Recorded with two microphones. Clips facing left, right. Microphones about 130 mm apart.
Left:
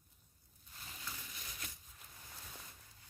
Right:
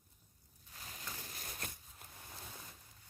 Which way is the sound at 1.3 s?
45° right (ahead or behind).